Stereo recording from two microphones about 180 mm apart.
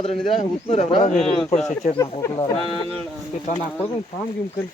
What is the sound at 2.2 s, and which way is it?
Speech, 25° left (ahead or behind).